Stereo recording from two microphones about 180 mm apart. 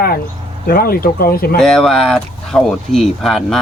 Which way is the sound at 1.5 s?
Centre (ahead or behind).